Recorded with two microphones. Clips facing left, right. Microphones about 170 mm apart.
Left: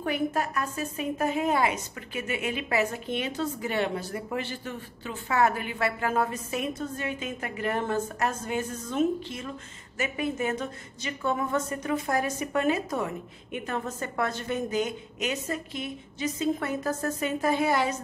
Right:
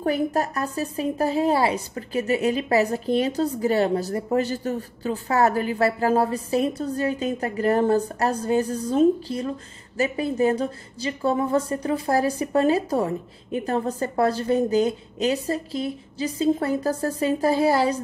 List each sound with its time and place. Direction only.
0.0 s a woman's voice: 40° right (ahead or behind)